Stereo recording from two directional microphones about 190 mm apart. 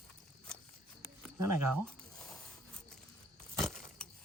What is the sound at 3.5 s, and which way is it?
Keys jangling, centre (ahead or behind).